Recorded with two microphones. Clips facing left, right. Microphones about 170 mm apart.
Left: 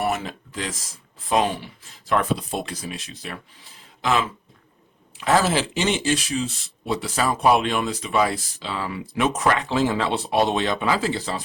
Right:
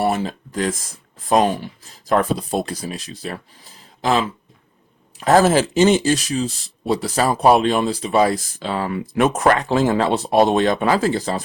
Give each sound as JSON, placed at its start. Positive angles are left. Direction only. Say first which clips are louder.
{"t": 0.0, "sound": "speech", "louder": "right 5 dB", "side_deg": -30}
{"t": 0.5, "sound": "speech", "louder": "right 10 dB", "side_deg": -50}